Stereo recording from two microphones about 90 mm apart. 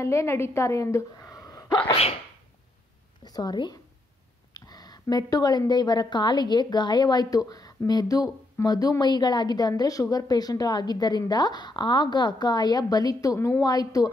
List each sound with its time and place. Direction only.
0.0 s a woman's voice: 30° left (ahead or behind)
3.3 s a woman's voice: 45° left (ahead or behind)